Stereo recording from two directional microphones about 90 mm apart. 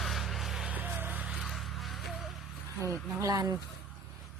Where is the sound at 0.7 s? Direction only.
20° right (ahead or behind).